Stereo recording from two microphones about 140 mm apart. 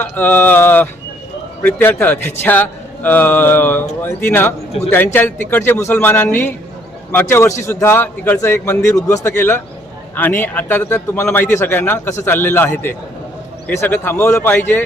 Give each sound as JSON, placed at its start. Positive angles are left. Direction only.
{"t": 0.0, "sound": "a man's voice", "side_deg": 15}